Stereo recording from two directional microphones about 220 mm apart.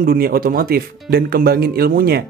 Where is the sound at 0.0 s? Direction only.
40° right (ahead or behind).